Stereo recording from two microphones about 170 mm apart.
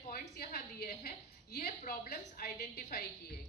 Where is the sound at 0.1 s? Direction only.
65° left (ahead or behind).